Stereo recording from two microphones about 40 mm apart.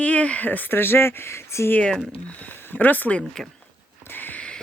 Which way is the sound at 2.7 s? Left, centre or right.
Left.